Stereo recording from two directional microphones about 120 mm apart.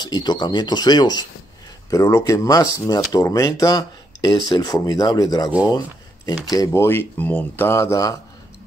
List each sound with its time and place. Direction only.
0.0 s speech: 35° left (ahead or behind)